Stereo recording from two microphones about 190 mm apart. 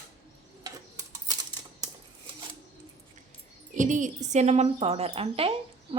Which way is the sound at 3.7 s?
40° right (ahead or behind).